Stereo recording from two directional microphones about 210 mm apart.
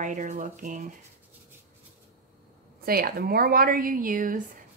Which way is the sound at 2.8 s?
45° right (ahead or behind).